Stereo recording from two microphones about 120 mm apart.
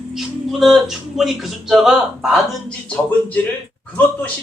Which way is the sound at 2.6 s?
10° left (ahead or behind).